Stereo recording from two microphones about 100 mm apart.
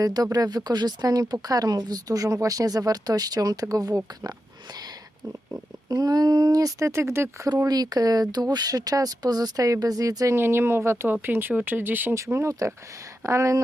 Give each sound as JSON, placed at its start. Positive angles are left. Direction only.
{"t": 0.0, "sound": "speech", "side_deg": -40}
{"t": 5.9, "sound": "speech", "side_deg": -40}
{"t": 7.5, "sound": "speech", "side_deg": -40}
{"t": 10.3, "sound": "speech", "side_deg": -25}